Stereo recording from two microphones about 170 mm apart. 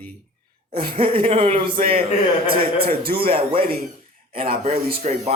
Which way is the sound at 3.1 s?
30° right (ahead or behind).